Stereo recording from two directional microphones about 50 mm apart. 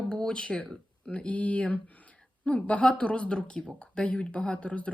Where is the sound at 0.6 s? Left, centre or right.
Left.